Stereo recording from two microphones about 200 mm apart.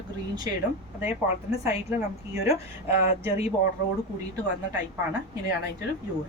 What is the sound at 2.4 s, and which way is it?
Speech, 15° right (ahead or behind).